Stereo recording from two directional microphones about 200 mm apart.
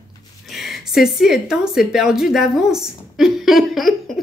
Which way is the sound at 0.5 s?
Centre (ahead or behind).